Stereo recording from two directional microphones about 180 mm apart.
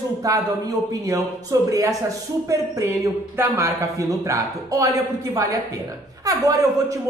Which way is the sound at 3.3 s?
20° right (ahead or behind).